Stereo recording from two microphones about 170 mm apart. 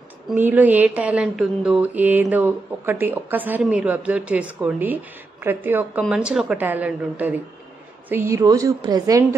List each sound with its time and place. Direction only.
0.3 s a woman's voice: 10° right (ahead or behind)